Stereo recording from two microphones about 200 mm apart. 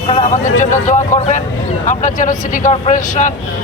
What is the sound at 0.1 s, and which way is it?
Speech, 35° left (ahead or behind).